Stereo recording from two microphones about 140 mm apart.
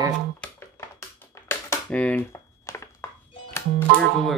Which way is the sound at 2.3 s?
20° left (ahead or behind).